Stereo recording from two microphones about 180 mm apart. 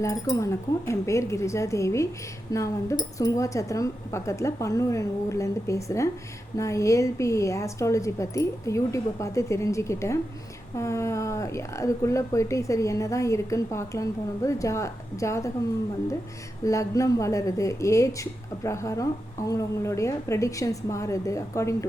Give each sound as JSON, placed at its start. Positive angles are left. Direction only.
{"t": 0.0, "sound": "speech", "side_deg": 20}
{"t": 16.6, "sound": "speech", "side_deg": 15}